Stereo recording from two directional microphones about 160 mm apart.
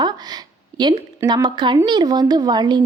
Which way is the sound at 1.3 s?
25° right (ahead or behind).